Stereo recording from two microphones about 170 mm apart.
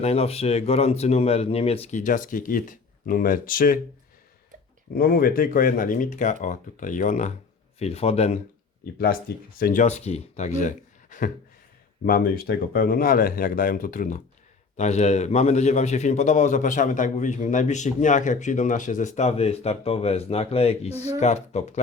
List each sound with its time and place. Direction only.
0.0 s a man's voice: 35° left (ahead or behind); by 3.8 s 55° left (ahead or behind)
4.9 s a man's voice: 60° left (ahead or behind); by 8.4 s 40° left (ahead or behind)
8.8 s speech: 60° left (ahead or behind)
9.8 s speech: 40° left (ahead or behind)
12.0 s speech: 60° left (ahead or behind)
14.8 s a man's voice: 40° left (ahead or behind)